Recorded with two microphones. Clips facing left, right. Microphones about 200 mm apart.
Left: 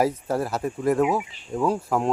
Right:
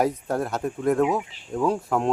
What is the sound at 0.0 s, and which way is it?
Speech, centre (ahead or behind).